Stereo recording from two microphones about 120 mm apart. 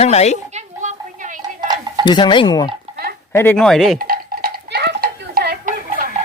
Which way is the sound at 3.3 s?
15° left (ahead or behind).